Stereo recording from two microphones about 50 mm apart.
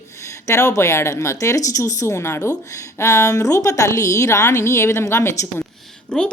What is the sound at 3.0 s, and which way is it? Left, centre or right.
A woman's voice, left.